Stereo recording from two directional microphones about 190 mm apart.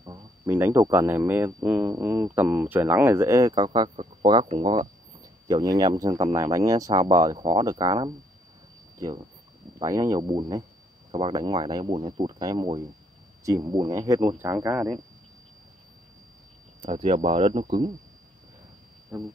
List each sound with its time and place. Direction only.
0.0 s speech: 15° right (ahead or behind)
9.8 s speech: 15° right (ahead or behind)
16.8 s speech: 35° right (ahead or behind)
19.1 s speech: 5° right (ahead or behind)